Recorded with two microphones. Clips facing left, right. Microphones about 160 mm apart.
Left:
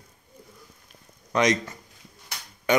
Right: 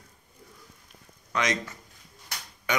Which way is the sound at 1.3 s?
40° left (ahead or behind).